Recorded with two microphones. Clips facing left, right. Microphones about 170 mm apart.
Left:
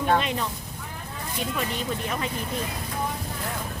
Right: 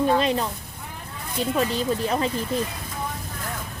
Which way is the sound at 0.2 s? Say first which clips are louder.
Right 6 dB; 35° right (ahead or behind).